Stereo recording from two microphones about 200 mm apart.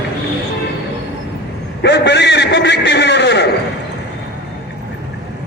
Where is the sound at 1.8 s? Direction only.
60° left (ahead or behind).